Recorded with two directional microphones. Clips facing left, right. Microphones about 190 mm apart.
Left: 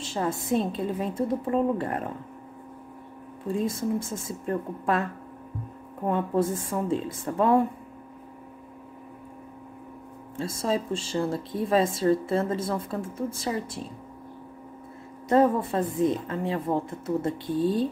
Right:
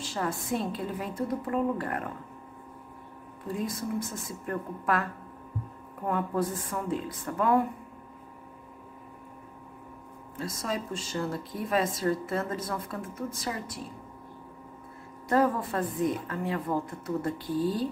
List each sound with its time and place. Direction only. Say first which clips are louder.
0.0 s speech: left 3 dB; 25° left (ahead or behind)
3.4 s speech: left 5 dB; 25° left (ahead or behind)
6.0 s speech: left 4 dB; 25° left (ahead or behind)
10.3 s speech: left 6 dB; 30° left (ahead or behind)
15.2 s speech: left 4 dB; 25° left (ahead or behind)